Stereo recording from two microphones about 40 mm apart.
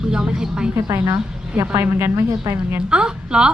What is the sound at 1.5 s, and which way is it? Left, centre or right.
A woman's voice, right.